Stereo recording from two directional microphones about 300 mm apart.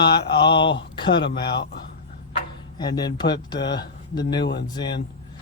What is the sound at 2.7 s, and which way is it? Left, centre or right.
Speech, centre.